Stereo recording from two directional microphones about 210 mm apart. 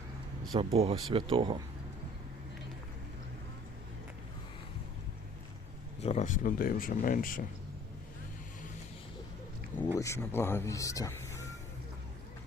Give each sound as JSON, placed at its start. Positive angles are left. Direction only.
{"t": 0.5, "sound": "speech", "side_deg": -25}
{"t": 6.0, "sound": "speech", "side_deg": 35}
{"t": 10.0, "sound": "speech", "side_deg": 10}